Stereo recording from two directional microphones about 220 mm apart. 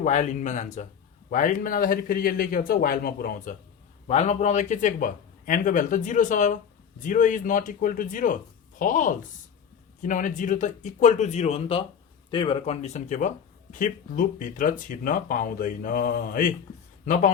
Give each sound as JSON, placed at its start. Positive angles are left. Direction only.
{"t": 0.0, "sound": "speech", "side_deg": 35}
{"t": 4.0, "sound": "speech", "side_deg": 30}